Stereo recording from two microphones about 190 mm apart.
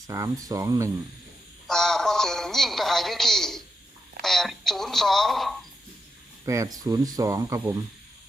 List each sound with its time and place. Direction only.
0.1 s speech: 15° right (ahead or behind)
1.6 s a man's voice: centre (ahead or behind)
6.4 s speech: 15° right (ahead or behind)